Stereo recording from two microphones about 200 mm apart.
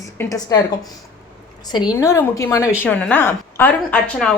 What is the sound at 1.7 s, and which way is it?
A woman's voice, 20° left (ahead or behind).